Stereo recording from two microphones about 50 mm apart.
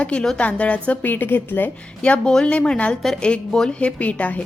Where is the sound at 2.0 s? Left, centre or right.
Left.